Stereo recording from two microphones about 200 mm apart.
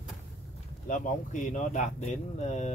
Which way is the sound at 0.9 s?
40° left (ahead or behind).